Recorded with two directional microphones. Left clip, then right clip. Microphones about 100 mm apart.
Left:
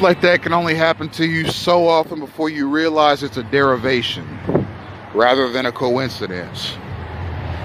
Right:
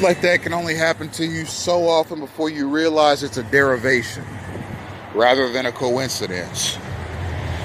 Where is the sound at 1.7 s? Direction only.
45° left (ahead or behind).